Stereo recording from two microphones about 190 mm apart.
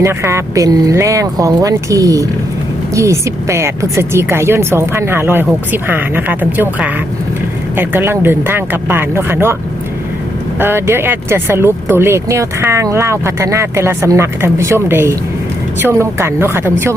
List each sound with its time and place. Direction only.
0.0 s speech: 15° right (ahead or behind)
10.6 s speech: 10° right (ahead or behind)